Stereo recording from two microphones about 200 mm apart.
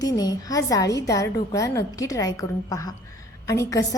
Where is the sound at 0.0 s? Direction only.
20° left (ahead or behind).